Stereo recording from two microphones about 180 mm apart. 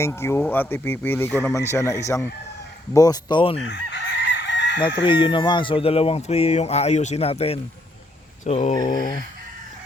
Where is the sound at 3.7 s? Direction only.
80° left.